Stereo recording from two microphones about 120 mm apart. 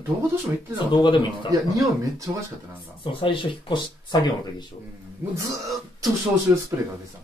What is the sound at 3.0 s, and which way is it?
Speech, 45° left (ahead or behind).